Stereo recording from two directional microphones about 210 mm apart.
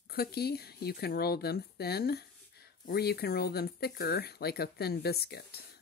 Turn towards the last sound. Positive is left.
turn(degrees=50)  # may be behind; listen again after turning